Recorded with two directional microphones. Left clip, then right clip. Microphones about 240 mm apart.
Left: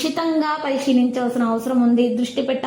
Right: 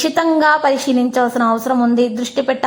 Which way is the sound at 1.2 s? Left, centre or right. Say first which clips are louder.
Right 7 dB; right.